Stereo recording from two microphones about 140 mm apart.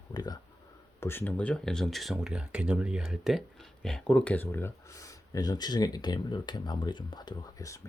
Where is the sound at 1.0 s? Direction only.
15° left (ahead or behind).